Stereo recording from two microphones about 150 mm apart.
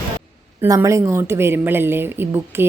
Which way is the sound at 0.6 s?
20° right (ahead or behind).